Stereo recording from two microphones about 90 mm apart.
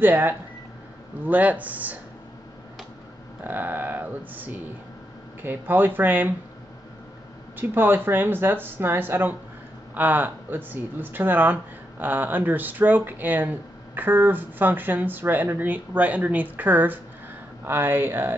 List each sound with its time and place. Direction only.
0.0 s speech: 20° right (ahead or behind)
3.4 s speech: 20° right (ahead or behind)
7.5 s speech: 20° right (ahead or behind)